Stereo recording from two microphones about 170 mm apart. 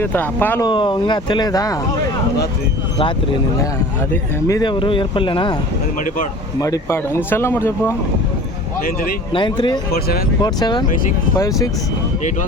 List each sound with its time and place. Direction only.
0.0 s speech: 10° left (ahead or behind)
0.6 s speech: 30° left (ahead or behind)
4.4 s speech: 25° left (ahead or behind)
6.6 s speech: 20° left (ahead or behind)
9.3 s speech: 25° left (ahead or behind)